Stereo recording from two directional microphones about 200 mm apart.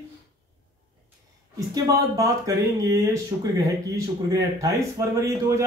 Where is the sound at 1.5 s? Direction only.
15° right (ahead or behind).